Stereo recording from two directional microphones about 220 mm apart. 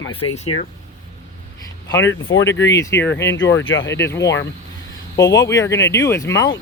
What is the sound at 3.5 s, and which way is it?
Speech, 60° left (ahead or behind).